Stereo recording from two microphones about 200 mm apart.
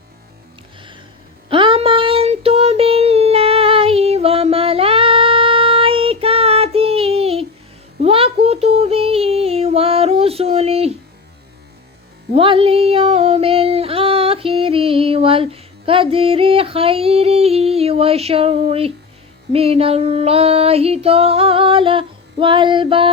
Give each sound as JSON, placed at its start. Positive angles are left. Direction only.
{"t": 1.5, "sound": "female singing", "side_deg": -25}
{"t": 8.0, "sound": "child singing", "side_deg": -30}
{"t": 12.3, "sound": "a sound", "side_deg": -25}
{"t": 19.5, "sound": "female singing", "side_deg": -30}